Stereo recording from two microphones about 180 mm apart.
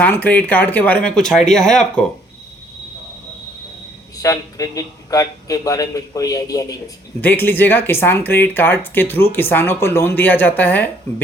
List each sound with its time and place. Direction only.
0.0 s speech: 10° left (ahead or behind)
4.2 s a man's voice: 20° left (ahead or behind)